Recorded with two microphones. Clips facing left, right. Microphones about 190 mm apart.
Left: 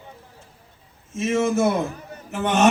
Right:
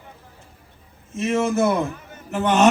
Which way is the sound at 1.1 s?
60° right (ahead or behind).